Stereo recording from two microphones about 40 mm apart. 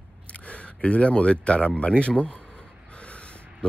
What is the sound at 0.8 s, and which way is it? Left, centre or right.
Speech, left.